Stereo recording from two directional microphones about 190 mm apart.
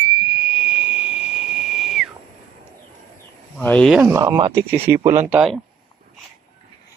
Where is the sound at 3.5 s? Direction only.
5° left (ahead or behind).